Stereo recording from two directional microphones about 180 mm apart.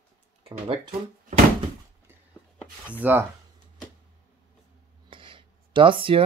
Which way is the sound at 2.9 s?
10° right (ahead or behind).